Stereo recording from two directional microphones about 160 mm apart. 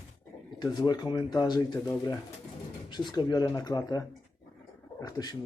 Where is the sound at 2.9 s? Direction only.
30° left (ahead or behind).